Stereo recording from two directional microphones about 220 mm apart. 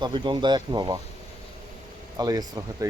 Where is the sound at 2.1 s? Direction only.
15° right (ahead or behind).